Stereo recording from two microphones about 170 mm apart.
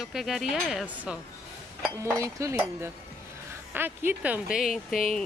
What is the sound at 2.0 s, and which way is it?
Speech, 15° right (ahead or behind).